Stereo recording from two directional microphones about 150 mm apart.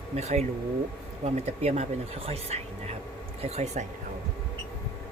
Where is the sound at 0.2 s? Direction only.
45° right (ahead or behind).